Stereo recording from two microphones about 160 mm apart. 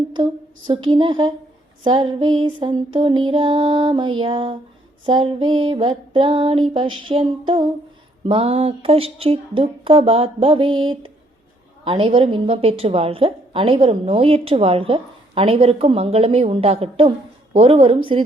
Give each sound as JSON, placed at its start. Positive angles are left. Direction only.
{"t": 0.2, "sound": "a woman's voice", "side_deg": -30}